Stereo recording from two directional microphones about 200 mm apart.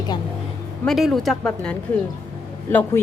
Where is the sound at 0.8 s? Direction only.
Centre (ahead or behind).